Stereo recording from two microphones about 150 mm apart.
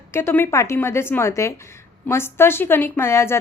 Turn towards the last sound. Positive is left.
turn(degrees=15)  # may be behind; listen again after turning